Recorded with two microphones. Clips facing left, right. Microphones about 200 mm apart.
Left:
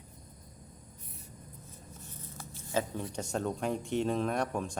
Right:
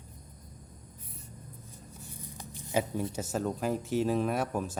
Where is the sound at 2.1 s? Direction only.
15° right (ahead or behind).